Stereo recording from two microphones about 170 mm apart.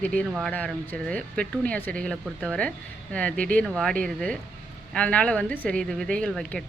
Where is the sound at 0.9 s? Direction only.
5° left (ahead or behind).